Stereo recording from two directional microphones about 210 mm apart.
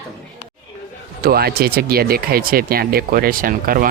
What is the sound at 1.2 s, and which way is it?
Speech, 50° right (ahead or behind).